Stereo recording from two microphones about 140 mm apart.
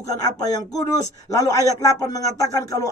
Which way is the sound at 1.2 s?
25° left (ahead or behind).